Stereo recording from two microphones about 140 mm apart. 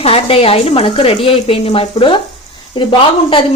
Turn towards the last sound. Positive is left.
turn(degrees=35)  # may be behind; listen again after turning